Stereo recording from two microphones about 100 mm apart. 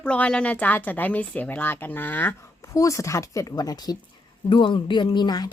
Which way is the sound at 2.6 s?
30° left (ahead or behind).